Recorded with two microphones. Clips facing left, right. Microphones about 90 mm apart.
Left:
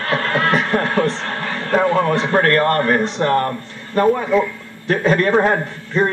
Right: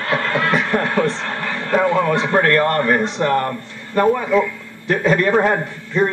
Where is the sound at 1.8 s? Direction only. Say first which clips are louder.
Even; 45° left (ahead or behind).